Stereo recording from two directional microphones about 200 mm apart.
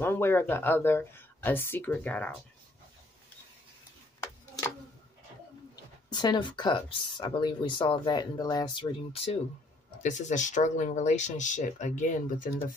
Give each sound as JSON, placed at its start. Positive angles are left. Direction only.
{"t": 0.0, "sound": "speech", "side_deg": 10}
{"t": 6.0, "sound": "speech", "side_deg": 20}